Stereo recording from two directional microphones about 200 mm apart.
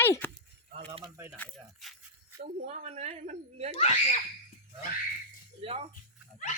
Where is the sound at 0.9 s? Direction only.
15° right (ahead or behind).